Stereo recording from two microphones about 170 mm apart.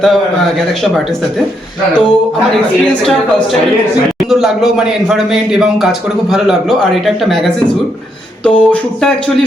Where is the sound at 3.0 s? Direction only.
Centre (ahead or behind).